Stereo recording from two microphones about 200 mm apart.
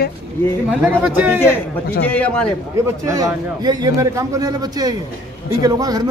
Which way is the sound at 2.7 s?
15° right (ahead or behind).